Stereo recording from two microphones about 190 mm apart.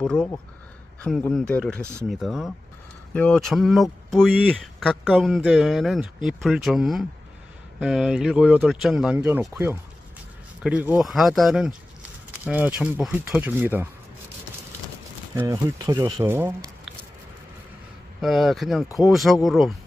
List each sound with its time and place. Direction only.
0.0 s speech: 5° left (ahead or behind)
15.3 s speech: 15° right (ahead or behind)
18.2 s speech: centre (ahead or behind)